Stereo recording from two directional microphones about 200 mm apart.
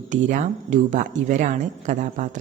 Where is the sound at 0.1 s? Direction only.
40° right (ahead or behind).